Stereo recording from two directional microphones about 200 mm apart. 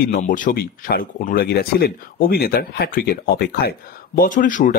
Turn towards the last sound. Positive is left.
turn(degrees=40)  # may be behind; listen again after turning